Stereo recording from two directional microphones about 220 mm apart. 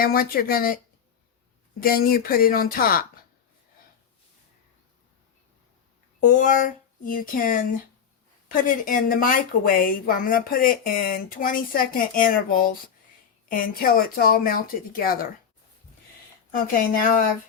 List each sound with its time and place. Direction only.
0.0 s a woman's voice: 40° left (ahead or behind)
1.8 s speech: 45° left (ahead or behind)
6.1 s a woman's voice: 40° left (ahead or behind)
16.5 s a woman's voice: 40° left (ahead or behind)